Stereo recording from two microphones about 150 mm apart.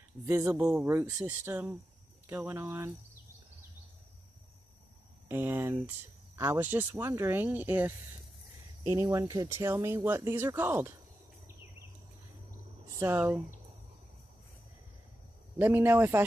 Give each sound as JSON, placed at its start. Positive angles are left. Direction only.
{"t": 0.3, "sound": "speech", "side_deg": -5}
{"t": 5.3, "sound": "speech", "side_deg": -15}
{"t": 8.8, "sound": "speech", "side_deg": -25}
{"t": 13.0, "sound": "speech", "side_deg": -15}
{"t": 15.5, "sound": "speech", "side_deg": -15}